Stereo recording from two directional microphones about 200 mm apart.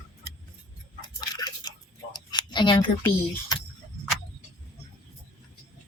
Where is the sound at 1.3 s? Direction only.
20° left (ahead or behind).